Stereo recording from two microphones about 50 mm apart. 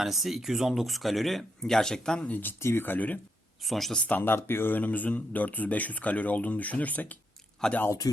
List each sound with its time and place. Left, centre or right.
0.0 s speech: centre
2.3 s speech: left
2.6 s speech: left
2.8 s speech: left
3.6 s speech: centre
3.9 s speech: left
4.4 s speech: left
7.6 s speech: centre